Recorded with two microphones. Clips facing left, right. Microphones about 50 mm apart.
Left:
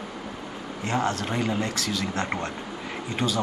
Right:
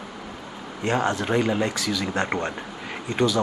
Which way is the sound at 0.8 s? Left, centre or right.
Centre.